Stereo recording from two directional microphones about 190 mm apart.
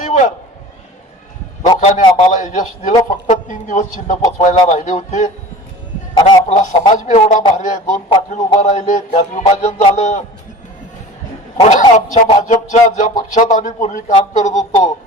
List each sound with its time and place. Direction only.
0.0 s a sound: 40° left (ahead or behind)
1.8 s a man's voice: 40° left (ahead or behind)
11.6 s a man's voice: 40° left (ahead or behind)